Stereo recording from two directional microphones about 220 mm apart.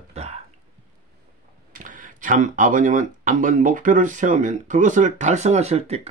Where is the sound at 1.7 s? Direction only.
35° right (ahead or behind).